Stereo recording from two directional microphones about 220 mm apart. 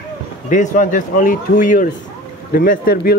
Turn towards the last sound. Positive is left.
turn(degrees=45)  # may be behind; listen again after turning